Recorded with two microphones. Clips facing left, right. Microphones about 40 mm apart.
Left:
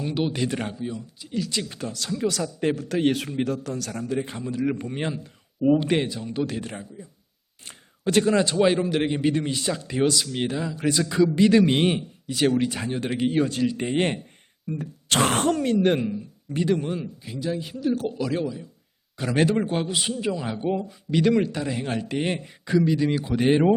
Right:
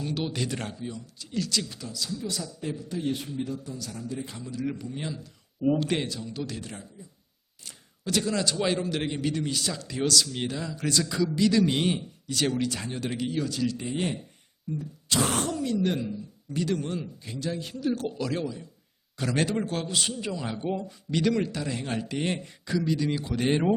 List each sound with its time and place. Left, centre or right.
0.0 s a man's voice: centre
1.5 s a man's voice: left
1.8 s speech: left
4.2 s speech: left
5.6 s a man's voice: centre
6.2 s a man's voice: left
12.3 s a man's voice: centre
13.0 s a man's voice: left; by 23.7 s centre